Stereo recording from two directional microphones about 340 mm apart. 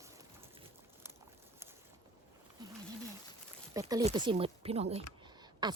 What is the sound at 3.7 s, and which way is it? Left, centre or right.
Speech, centre.